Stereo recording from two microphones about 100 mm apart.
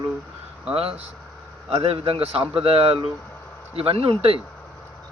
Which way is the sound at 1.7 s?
75° right (ahead or behind).